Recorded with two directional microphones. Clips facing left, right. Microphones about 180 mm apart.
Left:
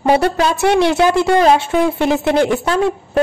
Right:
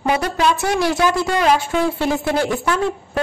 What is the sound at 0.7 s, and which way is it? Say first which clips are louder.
A woman's voice: left 5 dB; 25° left (ahead or behind).